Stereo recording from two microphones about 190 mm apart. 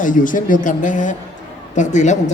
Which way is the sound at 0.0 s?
45° left (ahead or behind).